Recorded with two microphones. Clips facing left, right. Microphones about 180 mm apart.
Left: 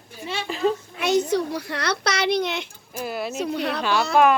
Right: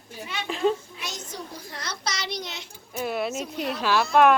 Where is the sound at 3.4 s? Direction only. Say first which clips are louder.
Left 5 dB; 65° left (ahead or behind).